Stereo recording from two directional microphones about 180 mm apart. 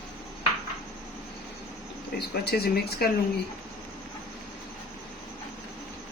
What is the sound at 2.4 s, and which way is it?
Speech, 60° left (ahead or behind).